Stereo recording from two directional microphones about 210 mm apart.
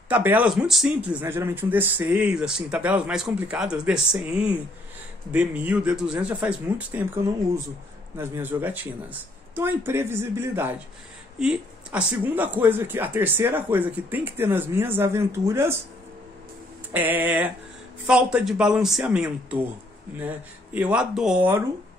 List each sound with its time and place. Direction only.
0.1 s speech: 10° right (ahead or behind)
16.9 s speech: 10° right (ahead or behind)